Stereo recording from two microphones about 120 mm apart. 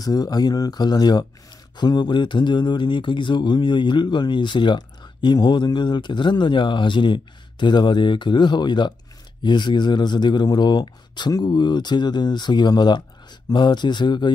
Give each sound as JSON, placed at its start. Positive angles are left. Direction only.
{"t": 0.0, "sound": "speech", "side_deg": 30}